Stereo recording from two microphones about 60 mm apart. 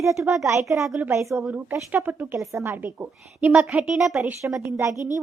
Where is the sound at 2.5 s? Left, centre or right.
Right.